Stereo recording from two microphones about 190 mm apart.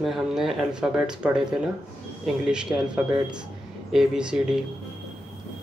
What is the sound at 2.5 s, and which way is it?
Speech, 5° right (ahead or behind).